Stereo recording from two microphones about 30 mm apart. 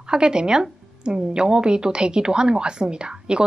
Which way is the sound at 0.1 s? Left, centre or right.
Right.